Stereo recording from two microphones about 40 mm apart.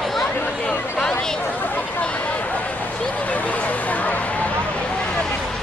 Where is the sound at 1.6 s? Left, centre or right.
Left.